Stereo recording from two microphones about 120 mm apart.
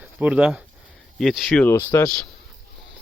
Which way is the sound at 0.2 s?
10° right (ahead or behind).